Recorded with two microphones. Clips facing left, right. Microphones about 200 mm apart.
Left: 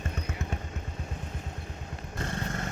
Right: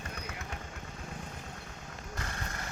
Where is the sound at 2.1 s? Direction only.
25° left (ahead or behind).